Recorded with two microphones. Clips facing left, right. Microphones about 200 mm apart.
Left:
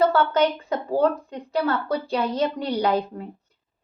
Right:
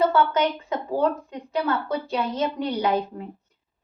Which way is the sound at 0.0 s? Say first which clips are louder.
Left 1 dB; 35° left (ahead or behind).